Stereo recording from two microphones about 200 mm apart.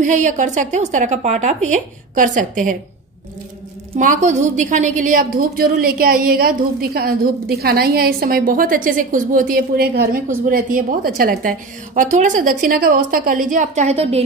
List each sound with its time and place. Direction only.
0.0 s a woman's voice: 40° right (ahead or behind)
3.9 s a woman's voice: 40° right (ahead or behind)